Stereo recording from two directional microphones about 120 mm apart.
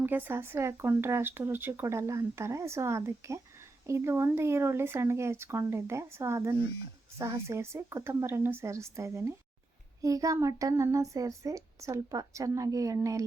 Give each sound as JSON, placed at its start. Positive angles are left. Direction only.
{"t": 0.0, "sound": "speech", "side_deg": -15}